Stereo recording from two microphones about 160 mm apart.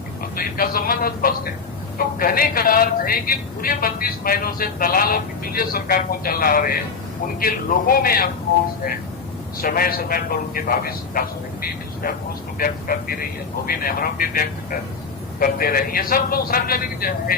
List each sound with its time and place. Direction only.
0.2 s speech: 65° left (ahead or behind)
9.6 s speech: 65° left (ahead or behind)
12.5 s speech: 65° left (ahead or behind)